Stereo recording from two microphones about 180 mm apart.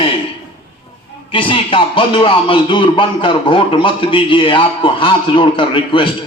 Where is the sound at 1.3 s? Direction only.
30° left (ahead or behind).